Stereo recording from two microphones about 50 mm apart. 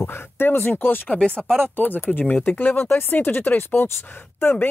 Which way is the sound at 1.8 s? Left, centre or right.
Left.